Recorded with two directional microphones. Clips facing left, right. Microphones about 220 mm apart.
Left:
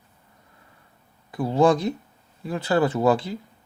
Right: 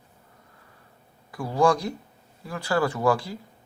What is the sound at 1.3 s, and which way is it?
Speech, 20° left (ahead or behind).